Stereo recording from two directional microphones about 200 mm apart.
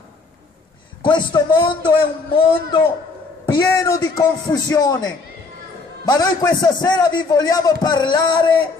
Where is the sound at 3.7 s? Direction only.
15° left (ahead or behind).